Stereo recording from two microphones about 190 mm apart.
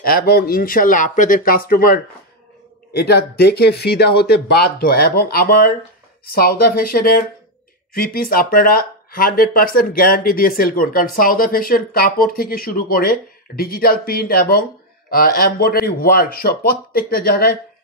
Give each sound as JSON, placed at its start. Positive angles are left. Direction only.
{"t": 0.0, "sound": "speech", "side_deg": 50}
{"t": 3.0, "sound": "speech", "side_deg": 55}